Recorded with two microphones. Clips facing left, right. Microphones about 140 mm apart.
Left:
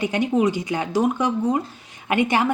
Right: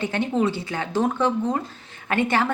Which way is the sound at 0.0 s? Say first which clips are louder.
Left 3 dB; 15° left (ahead or behind).